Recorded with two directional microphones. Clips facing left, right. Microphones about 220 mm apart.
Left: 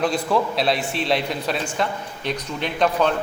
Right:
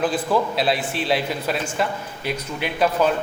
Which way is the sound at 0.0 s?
5° right (ahead or behind).